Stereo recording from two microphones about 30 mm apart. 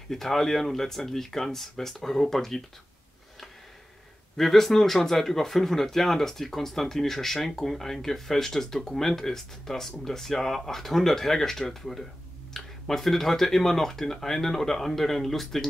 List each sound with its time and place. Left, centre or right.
0.1 s speech: centre
4.4 s speech: centre